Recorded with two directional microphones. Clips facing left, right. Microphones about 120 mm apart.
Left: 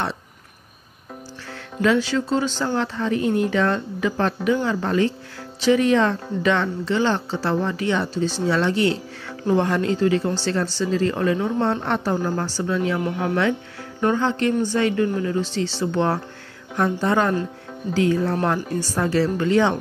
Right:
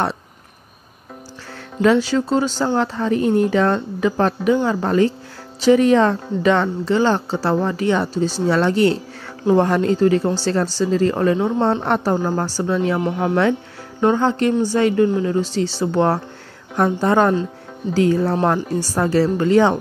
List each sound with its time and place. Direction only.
1.8 s speech: 35° right (ahead or behind)